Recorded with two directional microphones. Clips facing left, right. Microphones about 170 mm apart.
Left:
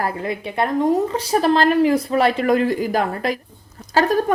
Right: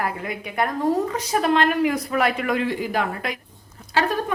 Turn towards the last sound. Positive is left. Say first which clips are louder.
# left 5 dB
turn(degrees=40)  # may be behind; listen again after turning